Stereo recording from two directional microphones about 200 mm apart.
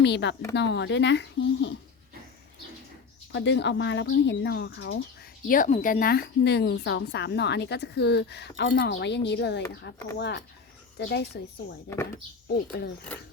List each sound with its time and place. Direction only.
0.0 s a woman's voice: 60° left (ahead or behind)
3.3 s a woman's voice: 60° left (ahead or behind)
5.5 s a woman's voice: 40° left (ahead or behind); by 11.3 s 60° left (ahead or behind)